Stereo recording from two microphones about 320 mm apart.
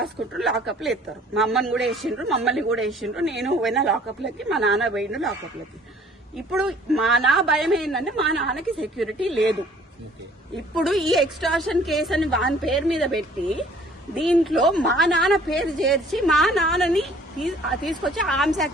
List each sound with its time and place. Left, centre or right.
0.0 s speech: centre
6.3 s speech: centre
10.8 s speech: centre